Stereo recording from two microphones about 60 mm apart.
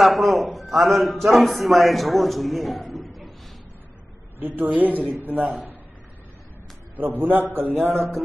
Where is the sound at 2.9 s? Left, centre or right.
Centre.